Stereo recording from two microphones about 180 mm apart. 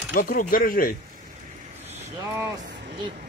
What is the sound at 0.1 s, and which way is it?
Speech, 50° left (ahead or behind).